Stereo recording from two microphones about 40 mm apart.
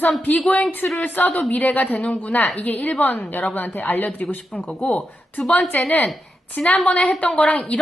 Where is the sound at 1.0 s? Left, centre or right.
Left.